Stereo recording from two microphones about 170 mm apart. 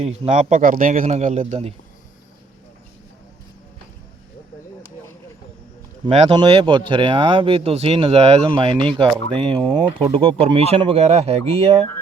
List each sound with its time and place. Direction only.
0.0 s speech: 40° right (ahead or behind)
0.5 s a man's voice: 55° right (ahead or behind)
6.1 s speech: 30° right (ahead or behind)